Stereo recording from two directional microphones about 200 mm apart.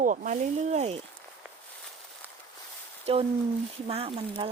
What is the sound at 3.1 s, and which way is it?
Speech, 30° right (ahead or behind).